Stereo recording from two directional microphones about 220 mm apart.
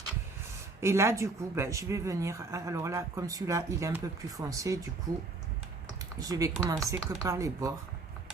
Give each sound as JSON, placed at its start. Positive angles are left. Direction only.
{"t": 0.8, "sound": "speech", "side_deg": -10}
{"t": 6.1, "sound": "speech", "side_deg": -15}